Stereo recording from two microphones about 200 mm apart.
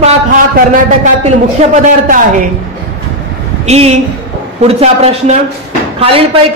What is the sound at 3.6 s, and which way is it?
A woman's voice, 30° right (ahead or behind).